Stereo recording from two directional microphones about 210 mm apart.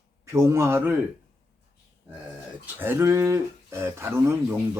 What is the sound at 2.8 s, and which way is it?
Speech, 10° right (ahead or behind).